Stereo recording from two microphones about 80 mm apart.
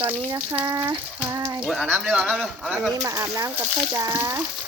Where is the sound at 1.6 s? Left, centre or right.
Centre.